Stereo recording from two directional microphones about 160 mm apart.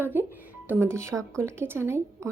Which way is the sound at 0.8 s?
15° right (ahead or behind).